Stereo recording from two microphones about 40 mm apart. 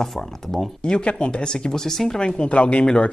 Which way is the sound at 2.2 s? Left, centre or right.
Left.